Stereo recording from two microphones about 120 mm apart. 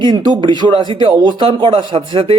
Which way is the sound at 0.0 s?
40° right (ahead or behind).